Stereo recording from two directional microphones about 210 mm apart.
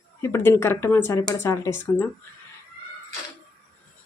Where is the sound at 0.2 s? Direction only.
10° left (ahead or behind).